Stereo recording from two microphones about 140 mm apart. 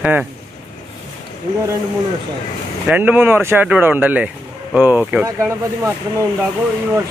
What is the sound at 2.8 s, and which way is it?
Speech, 10° right (ahead or behind).